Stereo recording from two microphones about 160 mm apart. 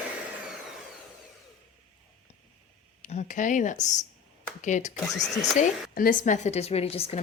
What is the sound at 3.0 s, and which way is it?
Speech, 50° left (ahead or behind).